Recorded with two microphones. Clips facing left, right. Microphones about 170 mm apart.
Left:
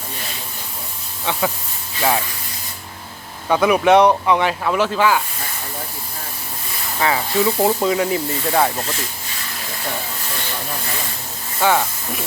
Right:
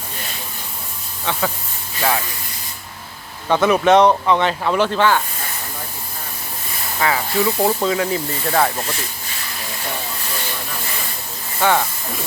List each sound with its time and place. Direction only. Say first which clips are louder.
1.2 s speech: left 1 dB; 15° left (ahead or behind)
3.5 s speech: even; 10° left (ahead or behind)
7.0 s speech: left 1 dB; 20° left (ahead or behind)
11.6 s speech: even; 10° left (ahead or behind)